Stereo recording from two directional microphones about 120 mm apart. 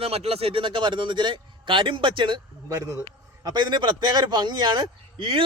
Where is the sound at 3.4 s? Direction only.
40° right (ahead or behind).